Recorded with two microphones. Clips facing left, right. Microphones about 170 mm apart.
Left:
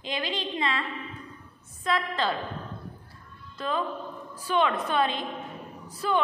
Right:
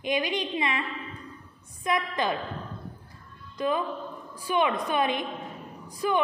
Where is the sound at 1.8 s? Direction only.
15° right (ahead or behind).